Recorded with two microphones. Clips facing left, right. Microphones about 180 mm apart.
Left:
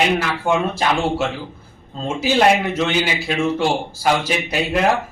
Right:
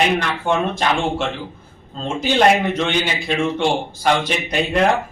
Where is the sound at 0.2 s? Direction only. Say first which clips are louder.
Left 1 dB; 5° left (ahead or behind).